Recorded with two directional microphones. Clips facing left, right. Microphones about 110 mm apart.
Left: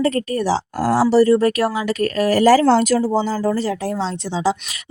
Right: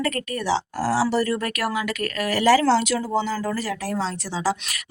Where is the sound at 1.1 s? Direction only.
30° left (ahead or behind); by 3.0 s 50° left (ahead or behind).